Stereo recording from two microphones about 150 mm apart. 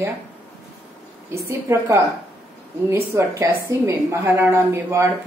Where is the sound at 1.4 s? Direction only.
20° right (ahead or behind).